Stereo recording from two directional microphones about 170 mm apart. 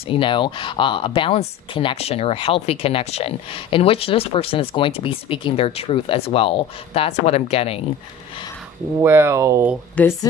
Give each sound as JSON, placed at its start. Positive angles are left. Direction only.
{"t": 0.1, "sound": "speech", "side_deg": 30}
{"t": 9.0, "sound": "speech", "side_deg": -15}
{"t": 10.0, "sound": "speech", "side_deg": 10}